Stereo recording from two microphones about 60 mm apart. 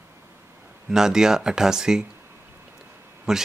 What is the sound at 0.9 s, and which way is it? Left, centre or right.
Speech, centre.